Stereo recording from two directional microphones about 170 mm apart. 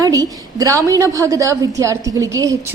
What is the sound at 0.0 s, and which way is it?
A woman's voice, 20° right (ahead or behind).